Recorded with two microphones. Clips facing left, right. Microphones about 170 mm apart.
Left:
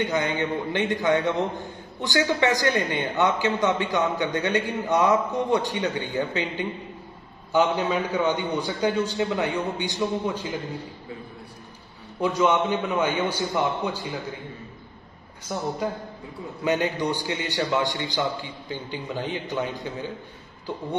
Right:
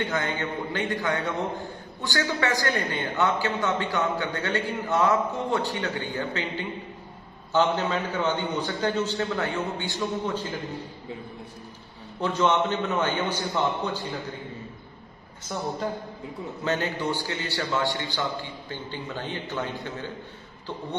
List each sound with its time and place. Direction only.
0.0 s a man's voice: 15° left (ahead or behind)
12.2 s a man's voice: 10° left (ahead or behind)
15.5 s a man's voice: 15° left (ahead or behind)